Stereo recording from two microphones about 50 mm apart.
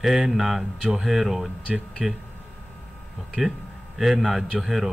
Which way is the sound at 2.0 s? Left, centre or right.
Centre.